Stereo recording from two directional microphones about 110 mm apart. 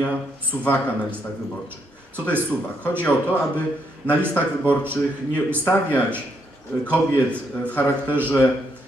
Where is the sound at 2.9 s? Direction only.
15° left (ahead or behind).